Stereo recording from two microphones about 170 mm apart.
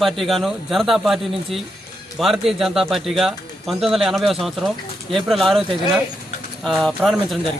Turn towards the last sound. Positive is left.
turn(degrees=0)  # may be behind; listen again after turning